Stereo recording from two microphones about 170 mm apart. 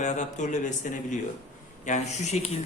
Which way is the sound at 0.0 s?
45° left (ahead or behind).